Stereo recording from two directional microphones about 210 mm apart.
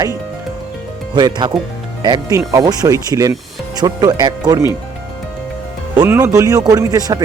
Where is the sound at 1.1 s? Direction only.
20° right (ahead or behind).